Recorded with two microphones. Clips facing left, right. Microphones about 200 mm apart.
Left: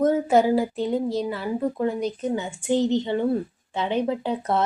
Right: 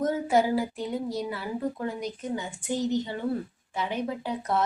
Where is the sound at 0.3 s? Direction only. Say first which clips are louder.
Left 5 dB; 25° left (ahead or behind).